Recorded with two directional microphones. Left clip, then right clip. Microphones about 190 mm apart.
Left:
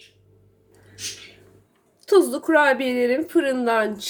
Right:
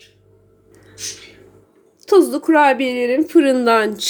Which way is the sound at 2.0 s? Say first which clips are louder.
Right 4 dB; 15° right (ahead or behind).